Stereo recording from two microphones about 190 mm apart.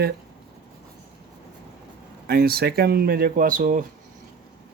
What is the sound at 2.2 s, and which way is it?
Speech, 55° right (ahead or behind).